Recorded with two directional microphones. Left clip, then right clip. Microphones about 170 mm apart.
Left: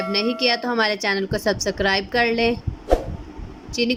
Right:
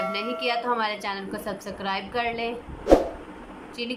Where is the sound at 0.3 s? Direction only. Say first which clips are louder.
Left 3 dB; 55° left (ahead or behind).